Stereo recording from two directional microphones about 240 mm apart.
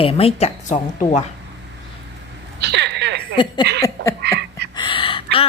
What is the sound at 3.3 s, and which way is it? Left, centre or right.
Speech, centre.